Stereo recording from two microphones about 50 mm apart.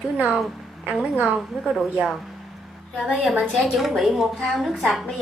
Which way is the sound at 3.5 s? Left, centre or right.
Centre.